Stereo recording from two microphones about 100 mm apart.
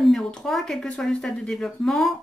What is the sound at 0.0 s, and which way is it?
Speech, 5° left (ahead or behind).